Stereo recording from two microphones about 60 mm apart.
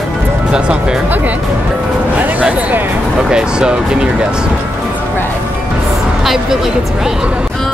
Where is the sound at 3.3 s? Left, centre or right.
Centre.